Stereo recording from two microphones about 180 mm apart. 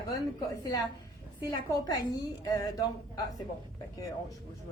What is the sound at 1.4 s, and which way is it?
A woman's voice, 20° left (ahead or behind).